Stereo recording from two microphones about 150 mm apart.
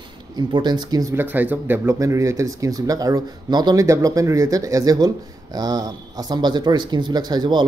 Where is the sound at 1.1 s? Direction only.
10° right (ahead or behind).